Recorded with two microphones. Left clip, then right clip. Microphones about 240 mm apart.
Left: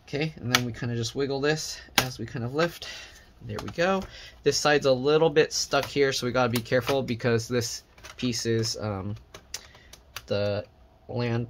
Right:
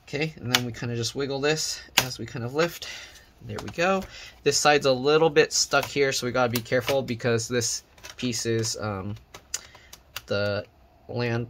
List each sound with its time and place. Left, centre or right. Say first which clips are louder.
0.1 s speech: right 1 dB; centre
10.2 s speech: right 1 dB; centre